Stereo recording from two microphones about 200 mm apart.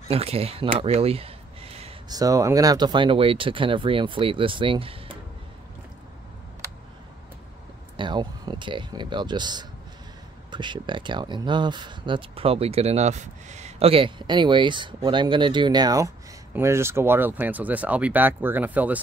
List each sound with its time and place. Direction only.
0.1 s speech: 30° right (ahead or behind)
2.0 s speech: 20° right (ahead or behind)
8.0 s speech: 20° right (ahead or behind)